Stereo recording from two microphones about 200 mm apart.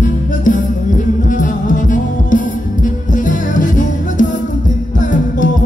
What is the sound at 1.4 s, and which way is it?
Music, 40° left (ahead or behind).